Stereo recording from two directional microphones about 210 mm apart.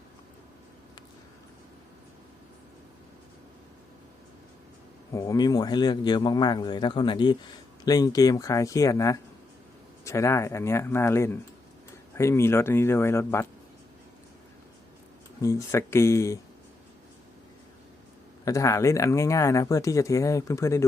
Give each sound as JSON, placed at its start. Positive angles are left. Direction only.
{"t": 5.1, "sound": "speech", "side_deg": 15}
{"t": 15.4, "sound": "speech", "side_deg": 15}
{"t": 18.4, "sound": "speech", "side_deg": 15}